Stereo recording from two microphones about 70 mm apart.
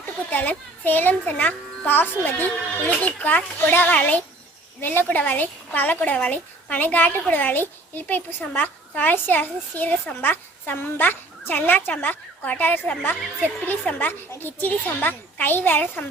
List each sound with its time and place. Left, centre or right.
0.3 s speech: left